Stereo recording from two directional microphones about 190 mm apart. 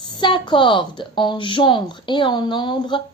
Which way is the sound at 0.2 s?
25° left (ahead or behind).